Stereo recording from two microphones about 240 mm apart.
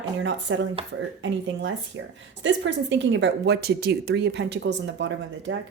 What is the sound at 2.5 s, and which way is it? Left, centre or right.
Speech, right.